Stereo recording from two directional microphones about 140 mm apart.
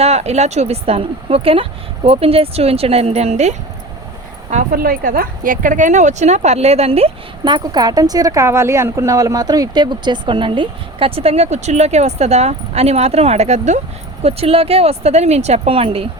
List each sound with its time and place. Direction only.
0.0 s speech: 50° right (ahead or behind)
4.5 s speech: 90° right; by 7.1 s 45° right (ahead or behind)
7.4 s speech: 30° right (ahead or behind)